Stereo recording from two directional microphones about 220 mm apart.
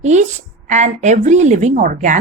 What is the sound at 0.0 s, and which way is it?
A woman's voice, 30° right (ahead or behind).